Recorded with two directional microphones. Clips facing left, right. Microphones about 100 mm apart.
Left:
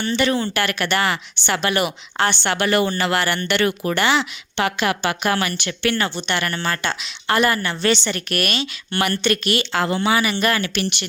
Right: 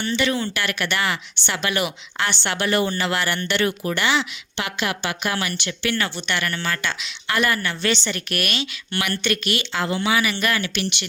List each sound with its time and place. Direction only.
0.0 s a woman's voice: 40° left (ahead or behind)
0.5 s speech: 50° left (ahead or behind); by 3.9 s 65° left (ahead or behind)
3.9 s speech: 45° left (ahead or behind)
6.0 s a woman's voice: 30° left (ahead or behind)